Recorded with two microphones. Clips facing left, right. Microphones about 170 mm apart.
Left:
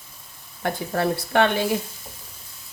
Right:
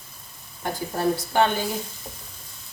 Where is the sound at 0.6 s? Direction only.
70° left (ahead or behind).